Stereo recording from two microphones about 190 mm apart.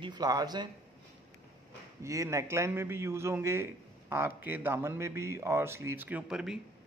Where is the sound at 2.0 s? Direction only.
15° right (ahead or behind).